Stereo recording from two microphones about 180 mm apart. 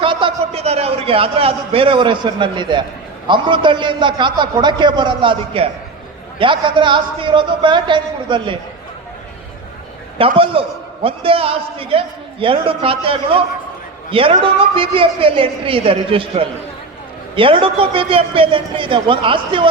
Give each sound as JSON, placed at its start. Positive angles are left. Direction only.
{"t": 0.0, "sound": "a man's voice", "side_deg": -25}
{"t": 10.2, "sound": "a man's voice", "side_deg": -30}